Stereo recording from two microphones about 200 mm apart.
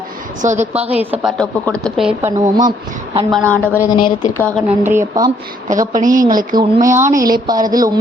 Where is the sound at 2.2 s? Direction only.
15° right (ahead or behind).